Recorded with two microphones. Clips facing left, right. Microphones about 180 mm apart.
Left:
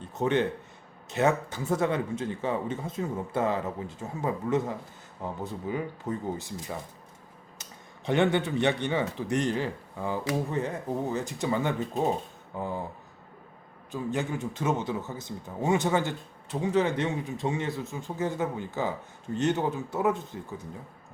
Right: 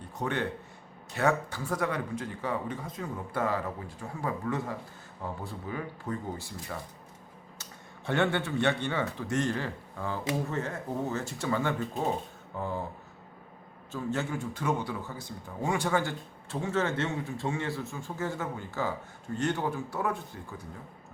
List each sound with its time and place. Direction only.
0.2 s a man's voice: 20° left (ahead or behind)
13.9 s a man's voice: 15° left (ahead or behind)